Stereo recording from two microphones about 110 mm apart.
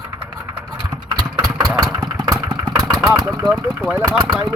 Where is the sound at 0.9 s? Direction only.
40° right (ahead or behind).